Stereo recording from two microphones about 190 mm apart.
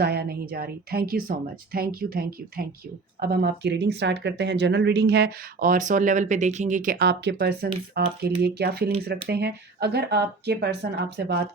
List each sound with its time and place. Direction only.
0.0 s speech: 55° right (ahead or behind)